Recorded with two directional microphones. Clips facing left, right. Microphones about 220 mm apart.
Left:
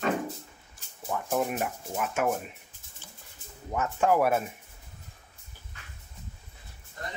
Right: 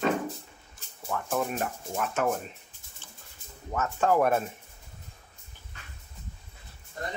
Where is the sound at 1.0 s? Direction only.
15° left (ahead or behind).